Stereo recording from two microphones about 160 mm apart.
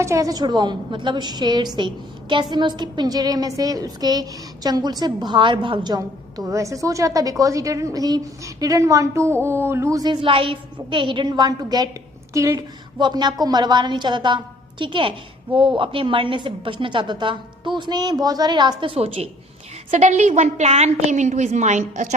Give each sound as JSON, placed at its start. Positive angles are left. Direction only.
{"t": 0.0, "sound": "a woman's voice", "side_deg": -20}